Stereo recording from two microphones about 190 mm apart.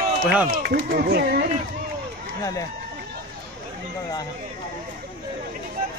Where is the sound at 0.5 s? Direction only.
50° right (ahead or behind).